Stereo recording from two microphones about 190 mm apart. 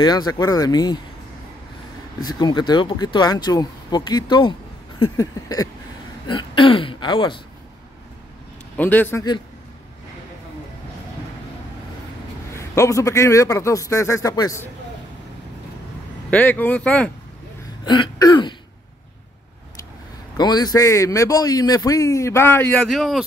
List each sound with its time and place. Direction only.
0.0 s speech: 20° left (ahead or behind)
2.2 s speech: 20° left (ahead or behind)
8.7 s a man's voice: 10° left (ahead or behind)
12.5 s a man's voice: 15° left (ahead or behind)
16.3 s a man's voice: 10° left (ahead or behind)
17.8 s speech: 25° left (ahead or behind)
20.3 s a man's voice: 20° left (ahead or behind); by 23.2 s centre (ahead or behind)